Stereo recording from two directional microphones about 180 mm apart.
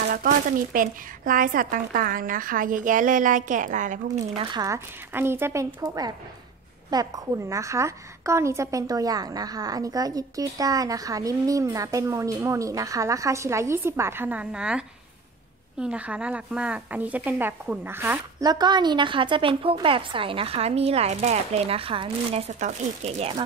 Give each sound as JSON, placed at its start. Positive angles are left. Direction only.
{"t": 0.1, "sound": "speech", "side_deg": -50}
{"t": 4.4, "sound": "a woman's voice", "side_deg": -25}
{"t": 18.4, "sound": "a woman's voice", "side_deg": -20}